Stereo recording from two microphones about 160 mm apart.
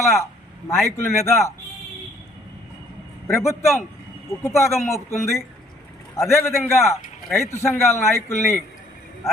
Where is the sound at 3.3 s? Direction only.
15° left (ahead or behind).